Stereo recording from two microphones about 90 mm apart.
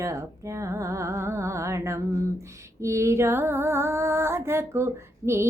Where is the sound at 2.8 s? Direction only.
35° right (ahead or behind).